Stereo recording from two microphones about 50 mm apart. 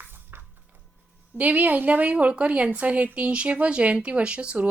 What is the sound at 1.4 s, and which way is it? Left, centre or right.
Speech, right.